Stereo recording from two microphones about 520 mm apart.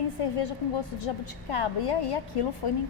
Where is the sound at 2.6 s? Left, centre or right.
Left.